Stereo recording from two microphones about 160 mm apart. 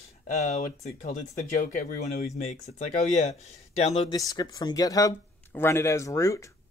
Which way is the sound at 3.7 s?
40° left (ahead or behind).